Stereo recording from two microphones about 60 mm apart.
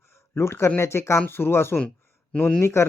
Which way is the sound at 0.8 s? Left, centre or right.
Left.